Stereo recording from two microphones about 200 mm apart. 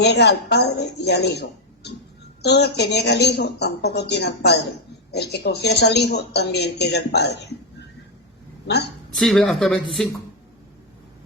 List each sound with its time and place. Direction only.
0.0 s speech: 55° left (ahead or behind)
8.6 s a woman's voice: 55° left (ahead or behind)
9.1 s speech: centre (ahead or behind)